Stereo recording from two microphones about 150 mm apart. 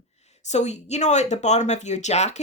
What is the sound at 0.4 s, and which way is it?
Speech, 50° left (ahead or behind).